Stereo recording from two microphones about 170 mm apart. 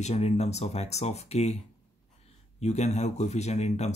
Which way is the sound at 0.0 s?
40° left (ahead or behind).